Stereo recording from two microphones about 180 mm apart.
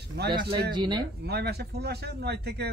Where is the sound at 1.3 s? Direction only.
65° right (ahead or behind).